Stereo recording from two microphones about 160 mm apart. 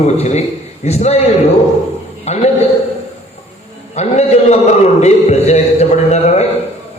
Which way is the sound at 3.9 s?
45° left (ahead or behind).